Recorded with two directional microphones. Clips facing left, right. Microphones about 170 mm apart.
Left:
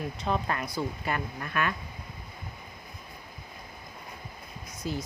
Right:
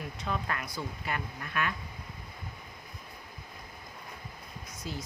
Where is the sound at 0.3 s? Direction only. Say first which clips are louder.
Left 5 dB; 30° left (ahead or behind).